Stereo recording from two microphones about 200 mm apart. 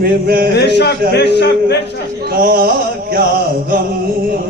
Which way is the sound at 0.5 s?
55° left (ahead or behind).